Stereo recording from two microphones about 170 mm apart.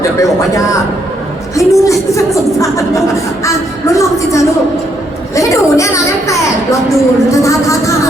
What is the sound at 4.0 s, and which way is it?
A woman's voice, 20° left (ahead or behind).